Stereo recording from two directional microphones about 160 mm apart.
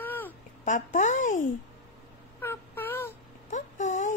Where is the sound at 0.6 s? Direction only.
50° left (ahead or behind).